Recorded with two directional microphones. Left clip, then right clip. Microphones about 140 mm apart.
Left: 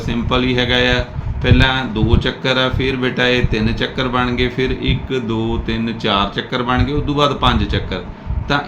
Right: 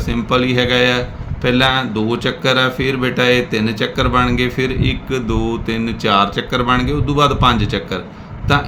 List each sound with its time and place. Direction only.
0.1 s speech: 35° right (ahead or behind)